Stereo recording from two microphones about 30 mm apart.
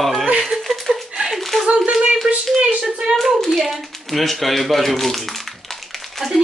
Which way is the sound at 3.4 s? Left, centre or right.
Centre.